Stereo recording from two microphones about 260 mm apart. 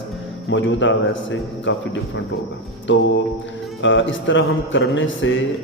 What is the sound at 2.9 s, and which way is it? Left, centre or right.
A man's voice, left.